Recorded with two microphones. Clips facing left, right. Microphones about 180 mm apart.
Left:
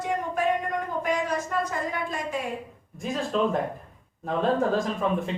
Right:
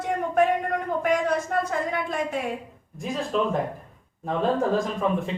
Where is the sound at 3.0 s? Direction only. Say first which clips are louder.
Even; centre (ahead or behind).